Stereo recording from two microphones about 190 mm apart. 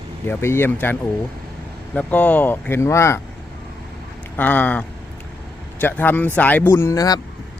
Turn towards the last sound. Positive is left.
turn(degrees=15)  # may be behind; listen again after turning